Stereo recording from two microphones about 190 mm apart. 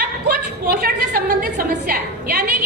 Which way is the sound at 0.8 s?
50° right (ahead or behind).